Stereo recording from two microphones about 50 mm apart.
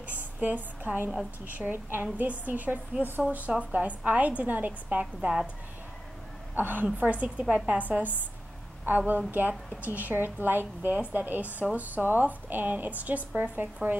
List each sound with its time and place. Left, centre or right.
0.1 s a sound: right
1.6 s a woman's voice: right
6.5 s a woman's voice: right
7.0 s a woman's voice: right
9.8 s a woman's voice: right